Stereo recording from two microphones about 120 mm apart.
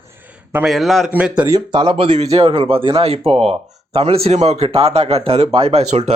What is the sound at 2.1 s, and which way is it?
A man's voice, 60° right (ahead or behind).